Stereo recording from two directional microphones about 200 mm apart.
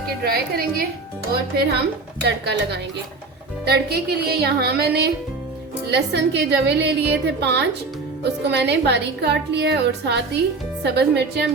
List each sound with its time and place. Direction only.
0.3 s a woman's voice: 50° right (ahead or behind)